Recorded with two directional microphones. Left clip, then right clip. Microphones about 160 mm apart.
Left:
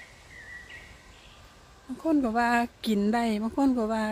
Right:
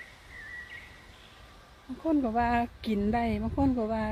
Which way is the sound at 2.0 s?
10° left (ahead or behind).